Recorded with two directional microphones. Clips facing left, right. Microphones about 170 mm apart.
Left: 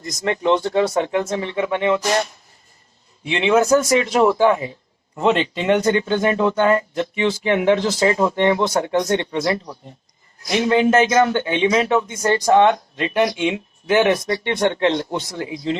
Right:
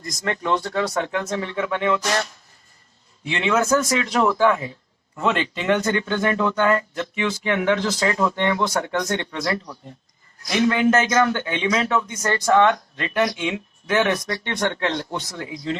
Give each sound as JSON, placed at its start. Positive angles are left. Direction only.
{"t": 0.0, "sound": "speech", "side_deg": 20}
{"t": 3.2, "sound": "speech", "side_deg": 25}